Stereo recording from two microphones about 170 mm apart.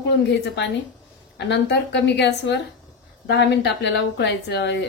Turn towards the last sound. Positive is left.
turn(degrees=85)